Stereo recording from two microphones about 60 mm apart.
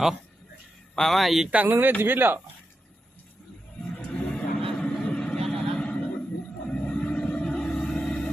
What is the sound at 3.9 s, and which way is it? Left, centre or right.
Vehicle, left.